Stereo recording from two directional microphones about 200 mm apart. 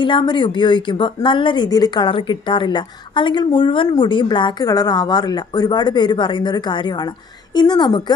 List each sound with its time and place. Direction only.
0.0 s a woman's voice: 25° left (ahead or behind)